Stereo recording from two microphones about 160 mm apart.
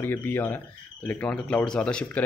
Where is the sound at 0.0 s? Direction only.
15° left (ahead or behind).